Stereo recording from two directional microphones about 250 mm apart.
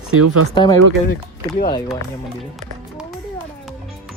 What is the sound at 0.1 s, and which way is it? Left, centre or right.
Speech, right.